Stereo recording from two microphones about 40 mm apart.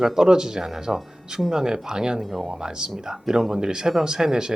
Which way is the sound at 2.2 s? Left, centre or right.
Centre.